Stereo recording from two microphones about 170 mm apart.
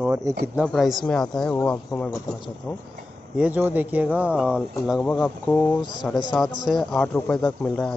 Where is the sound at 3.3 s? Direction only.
10° right (ahead or behind).